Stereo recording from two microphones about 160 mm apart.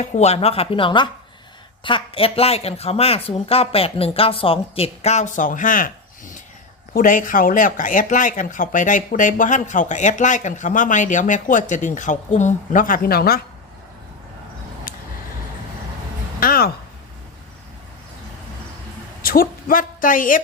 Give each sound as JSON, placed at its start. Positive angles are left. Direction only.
{"t": 0.0, "sound": "speech", "side_deg": 45}
{"t": 16.4, "sound": "a sound", "side_deg": 65}
{"t": 19.2, "sound": "a woman's voice", "side_deg": 65}